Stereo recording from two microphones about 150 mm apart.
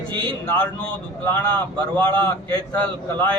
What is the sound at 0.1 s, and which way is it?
Speech, 35° right (ahead or behind).